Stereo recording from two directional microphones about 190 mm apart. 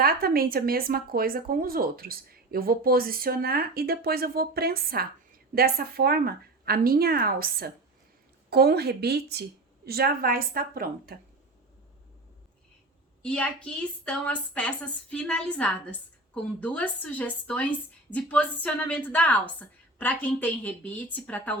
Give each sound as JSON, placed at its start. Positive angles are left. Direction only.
{"t": 0.0, "sound": "speech", "side_deg": -55}
{"t": 13.2, "sound": "a woman's voice", "side_deg": 5}